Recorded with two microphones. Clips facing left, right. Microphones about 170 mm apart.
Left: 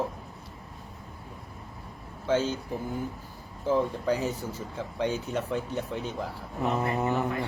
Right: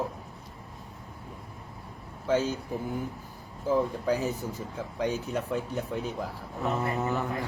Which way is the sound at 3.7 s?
Centre (ahead or behind).